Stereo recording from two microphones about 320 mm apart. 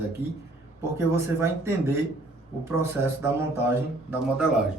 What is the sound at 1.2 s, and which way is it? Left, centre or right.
Speech, centre.